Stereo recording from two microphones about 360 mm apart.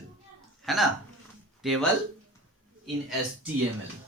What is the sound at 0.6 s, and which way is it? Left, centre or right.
Speech, centre.